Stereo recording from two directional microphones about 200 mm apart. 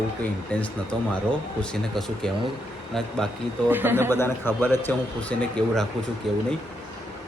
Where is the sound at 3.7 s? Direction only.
10° right (ahead or behind).